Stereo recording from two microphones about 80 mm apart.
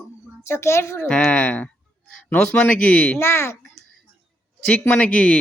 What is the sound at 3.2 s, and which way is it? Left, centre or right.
Speech, left.